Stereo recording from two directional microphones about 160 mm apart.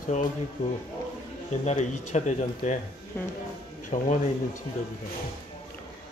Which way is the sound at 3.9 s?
45° left (ahead or behind).